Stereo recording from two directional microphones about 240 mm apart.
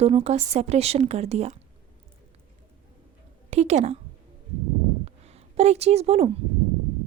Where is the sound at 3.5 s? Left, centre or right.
Right.